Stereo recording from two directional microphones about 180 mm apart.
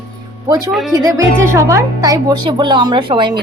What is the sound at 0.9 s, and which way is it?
Speech, 20° right (ahead or behind).